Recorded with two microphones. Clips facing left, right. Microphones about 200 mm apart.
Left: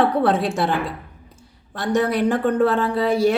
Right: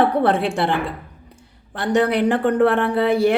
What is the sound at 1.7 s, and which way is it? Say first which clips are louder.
Speech: right 2 dB; 65° right (ahead or behind).